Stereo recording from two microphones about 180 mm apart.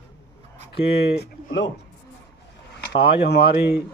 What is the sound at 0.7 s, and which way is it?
Speech, 65° left (ahead or behind).